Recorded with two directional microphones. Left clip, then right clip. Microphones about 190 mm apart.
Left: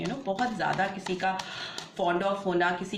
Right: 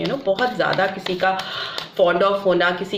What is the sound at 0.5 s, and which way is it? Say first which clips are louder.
Speech: right 9 dB; 30° right (ahead or behind).